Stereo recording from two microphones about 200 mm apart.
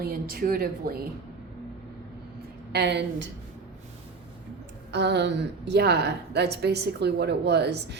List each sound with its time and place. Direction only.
0.0 s a woman's voice: 50° right (ahead or behind)
2.7 s a woman's voice: 60° right (ahead or behind)
4.9 s a woman's voice: 55° right (ahead or behind)